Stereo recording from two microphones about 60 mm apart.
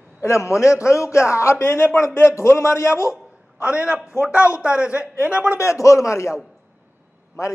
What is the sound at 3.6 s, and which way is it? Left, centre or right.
Speech, right.